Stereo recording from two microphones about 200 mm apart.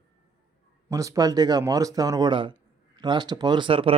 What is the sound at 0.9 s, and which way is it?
Speech, 15° right (ahead or behind).